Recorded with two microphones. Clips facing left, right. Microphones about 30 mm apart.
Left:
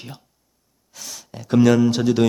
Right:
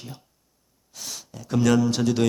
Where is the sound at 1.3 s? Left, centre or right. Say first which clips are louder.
Left 4 dB; left.